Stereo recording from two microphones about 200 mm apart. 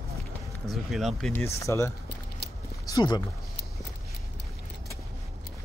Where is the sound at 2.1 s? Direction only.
55° left (ahead or behind).